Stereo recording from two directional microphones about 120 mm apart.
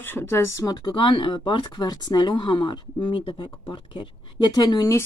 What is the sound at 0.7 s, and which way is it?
Speech, 40° left (ahead or behind).